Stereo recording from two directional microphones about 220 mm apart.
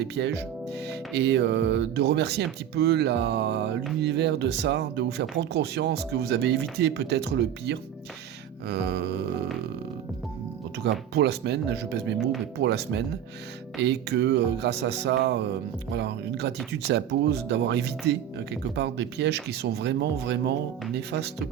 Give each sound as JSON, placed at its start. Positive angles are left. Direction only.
{"t": 0.0, "sound": "speech", "side_deg": -50}
{"t": 11.1, "sound": "speech", "side_deg": -50}